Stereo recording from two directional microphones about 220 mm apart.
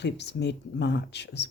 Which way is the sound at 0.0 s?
50° left (ahead or behind).